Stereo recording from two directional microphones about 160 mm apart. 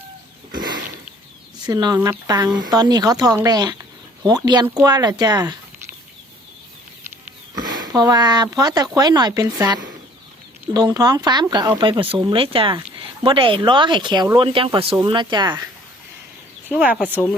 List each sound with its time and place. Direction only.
1.6 s speech: 25° right (ahead or behind)
7.5 s speech: 25° right (ahead or behind)
16.7 s speech: 10° right (ahead or behind)